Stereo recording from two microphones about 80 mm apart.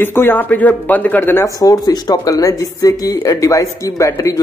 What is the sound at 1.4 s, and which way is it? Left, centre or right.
Speech, left.